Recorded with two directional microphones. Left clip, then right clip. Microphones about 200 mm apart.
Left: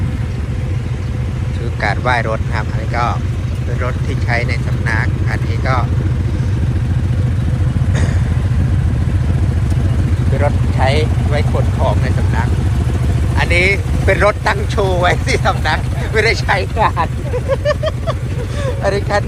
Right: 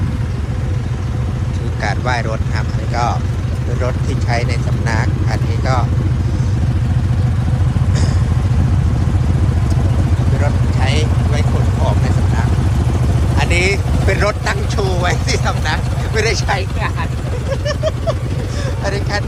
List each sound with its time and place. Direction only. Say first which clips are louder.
1.8 s speech: left 4 dB; 15° right (ahead or behind)
10.4 s speech: left 6 dB; 10° right (ahead or behind)
17.7 s speech: left 2 dB; 15° right (ahead or behind)
18.8 s speech: left 5 dB; 5° right (ahead or behind)